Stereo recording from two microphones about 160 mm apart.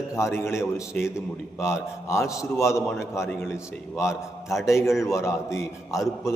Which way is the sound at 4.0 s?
15° left (ahead or behind).